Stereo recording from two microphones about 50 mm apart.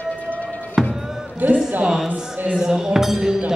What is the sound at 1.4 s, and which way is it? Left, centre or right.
Speech, right.